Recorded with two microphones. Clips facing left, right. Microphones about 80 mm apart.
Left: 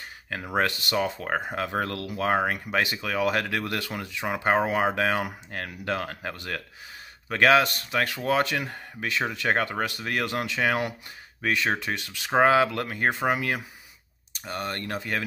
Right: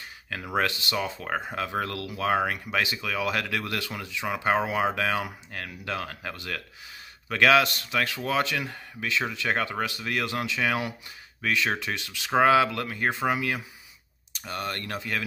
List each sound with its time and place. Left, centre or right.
0.6 s speech: left